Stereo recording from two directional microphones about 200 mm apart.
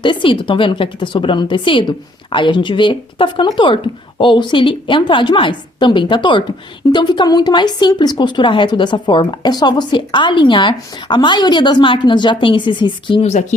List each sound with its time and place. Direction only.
0.0 s a woman's voice: 25° left (ahead or behind)